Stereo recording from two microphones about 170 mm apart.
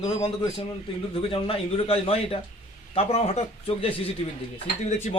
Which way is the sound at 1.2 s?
30° left (ahead or behind).